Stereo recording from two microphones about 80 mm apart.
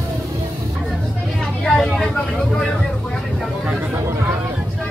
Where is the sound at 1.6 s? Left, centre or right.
Centre.